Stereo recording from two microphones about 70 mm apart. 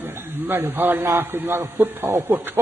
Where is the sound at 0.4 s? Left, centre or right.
Right.